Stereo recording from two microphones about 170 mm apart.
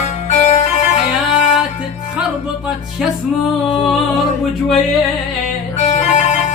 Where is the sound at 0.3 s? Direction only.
45° left (ahead or behind).